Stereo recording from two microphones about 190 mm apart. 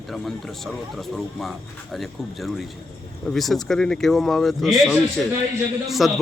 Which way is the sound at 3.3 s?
Centre (ahead or behind).